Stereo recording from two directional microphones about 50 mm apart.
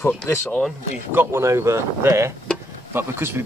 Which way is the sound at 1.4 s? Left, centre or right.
Right.